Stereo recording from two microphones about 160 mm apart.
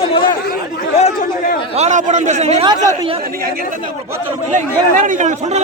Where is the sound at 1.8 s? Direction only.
50° right (ahead or behind).